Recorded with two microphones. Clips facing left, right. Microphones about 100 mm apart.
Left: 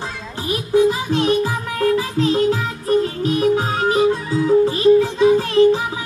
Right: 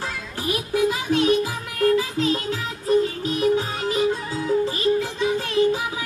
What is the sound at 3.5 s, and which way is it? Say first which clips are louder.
Music: left 5 dB; 55° left (ahead or behind).